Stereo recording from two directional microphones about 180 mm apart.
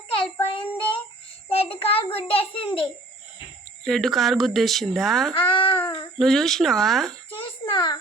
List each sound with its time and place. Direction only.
0.1 s child singing: 30° left (ahead or behind)
1.5 s a child's voice: 30° left (ahead or behind)
3.8 s speech: centre (ahead or behind)
5.3 s a sound: 25° left (ahead or behind)
6.1 s speech: centre (ahead or behind)
7.6 s a sound: 25° left (ahead or behind)